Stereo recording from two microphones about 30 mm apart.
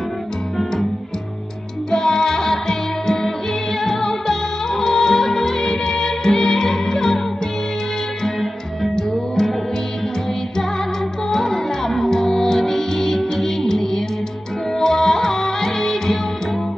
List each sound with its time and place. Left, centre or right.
1.9 s music: centre
8.9 s music: centre
11.2 s music: centre